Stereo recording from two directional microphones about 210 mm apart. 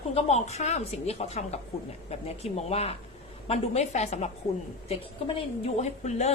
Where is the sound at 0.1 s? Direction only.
30° left (ahead or behind).